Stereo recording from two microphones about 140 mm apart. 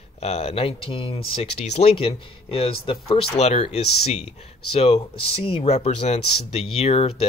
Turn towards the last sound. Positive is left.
turn(degrees=45)  # may be behind; listen again after turning